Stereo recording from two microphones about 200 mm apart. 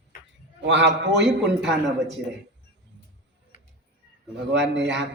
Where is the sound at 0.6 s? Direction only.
60° right (ahead or behind).